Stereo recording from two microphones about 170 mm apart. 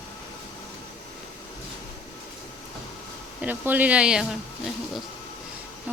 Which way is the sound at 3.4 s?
10° right (ahead or behind).